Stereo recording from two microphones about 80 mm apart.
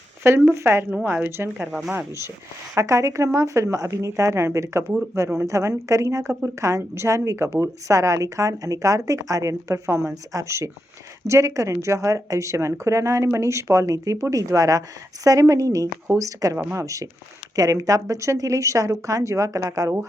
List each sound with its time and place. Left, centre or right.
0.2 s speech: right
2.0 s speech: right